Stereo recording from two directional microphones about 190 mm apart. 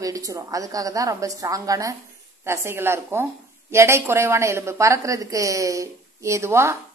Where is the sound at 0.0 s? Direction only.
15° right (ahead or behind).